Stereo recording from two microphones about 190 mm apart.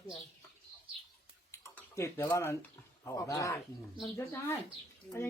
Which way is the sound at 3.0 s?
15° left (ahead or behind).